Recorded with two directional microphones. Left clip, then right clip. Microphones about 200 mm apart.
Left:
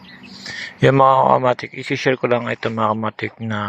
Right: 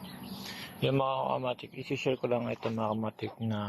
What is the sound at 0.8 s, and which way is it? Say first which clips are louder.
Speech: left 18 dB; 40° left (ahead or behind).